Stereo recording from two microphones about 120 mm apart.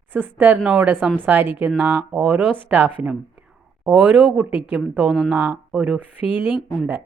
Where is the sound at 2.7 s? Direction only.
15° right (ahead or behind).